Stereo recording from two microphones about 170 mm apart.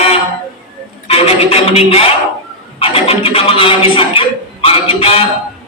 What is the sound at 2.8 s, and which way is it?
Speech, 35° left (ahead or behind).